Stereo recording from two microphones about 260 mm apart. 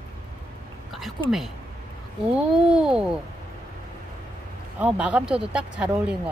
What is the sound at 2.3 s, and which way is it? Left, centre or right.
Speech, centre.